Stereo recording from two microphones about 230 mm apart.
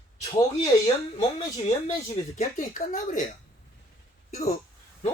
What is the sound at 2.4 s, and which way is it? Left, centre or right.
Speech, left.